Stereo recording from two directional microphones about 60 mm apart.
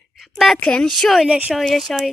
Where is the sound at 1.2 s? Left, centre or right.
Centre.